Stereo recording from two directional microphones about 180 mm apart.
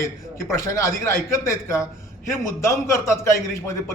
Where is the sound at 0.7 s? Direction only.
15° left (ahead or behind).